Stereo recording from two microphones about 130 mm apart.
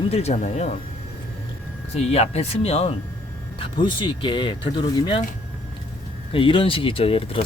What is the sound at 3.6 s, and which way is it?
Speech, 40° left (ahead or behind).